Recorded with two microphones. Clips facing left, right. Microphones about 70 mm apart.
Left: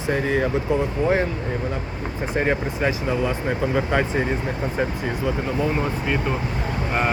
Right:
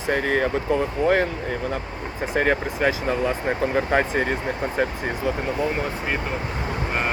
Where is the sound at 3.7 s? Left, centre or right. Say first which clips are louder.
Right 1 dB; right.